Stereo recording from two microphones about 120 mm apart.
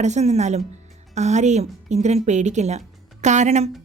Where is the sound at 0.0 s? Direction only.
70° right (ahead or behind).